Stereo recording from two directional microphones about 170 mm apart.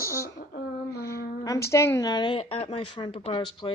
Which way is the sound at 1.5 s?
15° left (ahead or behind).